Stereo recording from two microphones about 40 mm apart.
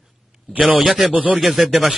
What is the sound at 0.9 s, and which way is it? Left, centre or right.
Speech, right.